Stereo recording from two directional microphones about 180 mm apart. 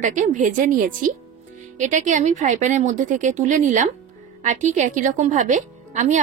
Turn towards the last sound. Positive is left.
turn(degrees=-40)  # may be behind; listen again after turning